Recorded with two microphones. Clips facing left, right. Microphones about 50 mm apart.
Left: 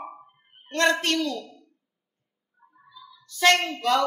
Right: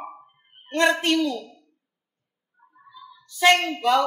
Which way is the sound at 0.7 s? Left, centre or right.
Centre.